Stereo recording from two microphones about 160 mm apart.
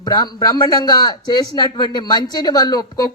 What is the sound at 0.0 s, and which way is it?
Speech, 25° left (ahead or behind).